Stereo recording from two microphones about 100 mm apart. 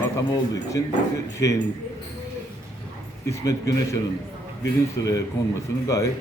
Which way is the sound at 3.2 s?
30° left (ahead or behind).